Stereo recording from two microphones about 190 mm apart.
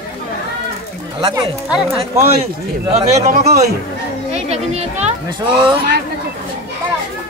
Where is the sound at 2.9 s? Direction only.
35° right (ahead or behind).